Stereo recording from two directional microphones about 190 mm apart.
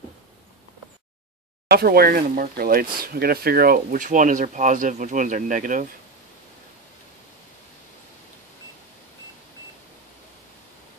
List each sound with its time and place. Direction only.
1.7 s speech: 55° right (ahead or behind)